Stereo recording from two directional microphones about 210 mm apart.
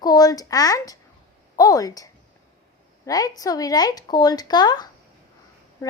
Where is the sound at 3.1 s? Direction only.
15° left (ahead or behind).